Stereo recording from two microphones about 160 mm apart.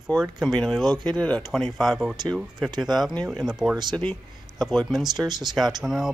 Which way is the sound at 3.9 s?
10° left (ahead or behind).